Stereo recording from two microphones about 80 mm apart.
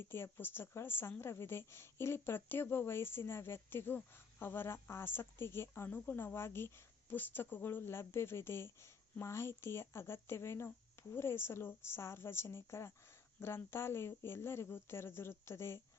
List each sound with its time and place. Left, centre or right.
0.0 s speech: left